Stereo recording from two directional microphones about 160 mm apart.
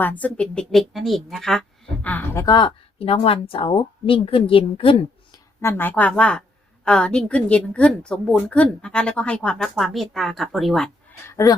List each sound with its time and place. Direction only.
0.0 s a woman's voice: 10° left (ahead or behind); by 5.4 s 35° left (ahead or behind)
5.5 s a woman's voice: 15° left (ahead or behind)
11.3 s speech: 20° left (ahead or behind)